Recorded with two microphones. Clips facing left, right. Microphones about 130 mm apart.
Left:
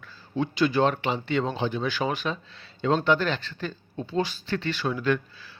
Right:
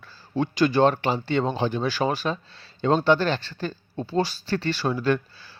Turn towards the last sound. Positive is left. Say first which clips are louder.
# right 2 dB
turn(degrees=-35)  # may be behind; listen again after turning